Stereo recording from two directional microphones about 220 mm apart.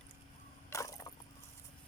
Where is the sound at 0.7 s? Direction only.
15° left (ahead or behind).